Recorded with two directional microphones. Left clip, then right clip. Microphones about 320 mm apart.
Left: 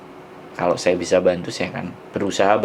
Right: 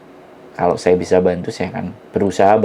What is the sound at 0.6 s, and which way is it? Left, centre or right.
Speech, right.